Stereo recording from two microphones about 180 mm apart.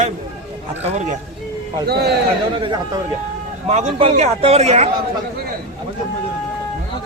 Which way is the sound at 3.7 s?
35° right (ahead or behind).